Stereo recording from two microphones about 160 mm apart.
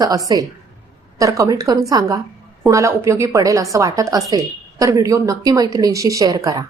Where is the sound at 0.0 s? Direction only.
20° right (ahead or behind).